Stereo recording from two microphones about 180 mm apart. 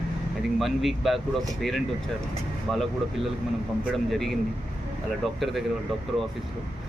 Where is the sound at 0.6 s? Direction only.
Centre (ahead or behind).